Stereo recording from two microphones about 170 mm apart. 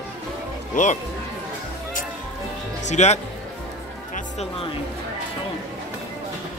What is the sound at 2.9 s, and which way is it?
Speech, 40° left (ahead or behind).